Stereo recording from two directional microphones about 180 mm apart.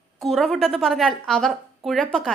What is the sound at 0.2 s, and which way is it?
A woman's voice, centre (ahead or behind).